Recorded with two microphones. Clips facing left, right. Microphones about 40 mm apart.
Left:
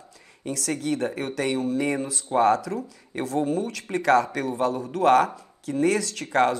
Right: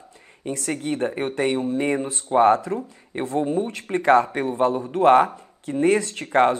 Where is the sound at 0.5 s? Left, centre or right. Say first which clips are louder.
Right 1 dB; right.